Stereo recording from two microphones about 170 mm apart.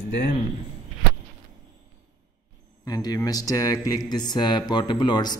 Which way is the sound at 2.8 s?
20° left (ahead or behind).